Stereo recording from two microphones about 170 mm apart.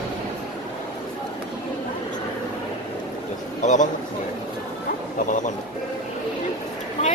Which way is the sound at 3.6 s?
45° left (ahead or behind).